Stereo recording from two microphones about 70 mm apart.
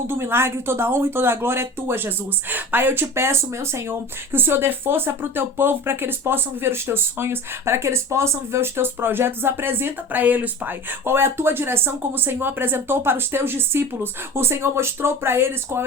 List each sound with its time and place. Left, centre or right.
0.1 s speech: right